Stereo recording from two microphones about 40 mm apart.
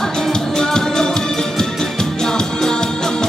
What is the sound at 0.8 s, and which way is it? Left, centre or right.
Music, centre.